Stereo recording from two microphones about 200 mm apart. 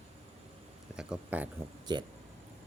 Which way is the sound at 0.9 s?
5° right (ahead or behind).